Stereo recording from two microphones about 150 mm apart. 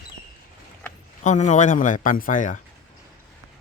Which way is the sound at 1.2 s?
55° left (ahead or behind).